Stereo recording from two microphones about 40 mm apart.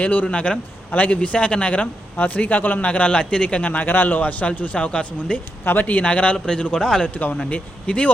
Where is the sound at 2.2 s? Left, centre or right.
Left.